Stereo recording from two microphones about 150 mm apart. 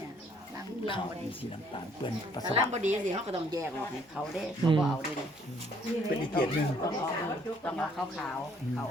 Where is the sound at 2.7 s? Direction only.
50° right (ahead or behind).